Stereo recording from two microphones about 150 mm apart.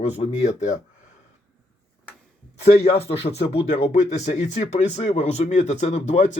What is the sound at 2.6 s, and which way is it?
Speech, 40° left (ahead or behind).